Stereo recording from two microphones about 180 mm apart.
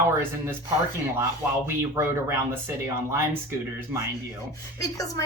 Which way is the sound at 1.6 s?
15° right (ahead or behind).